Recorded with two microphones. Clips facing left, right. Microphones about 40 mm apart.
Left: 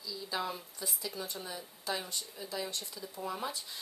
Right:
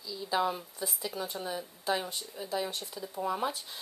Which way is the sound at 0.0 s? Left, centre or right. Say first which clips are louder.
Right 7 dB; centre.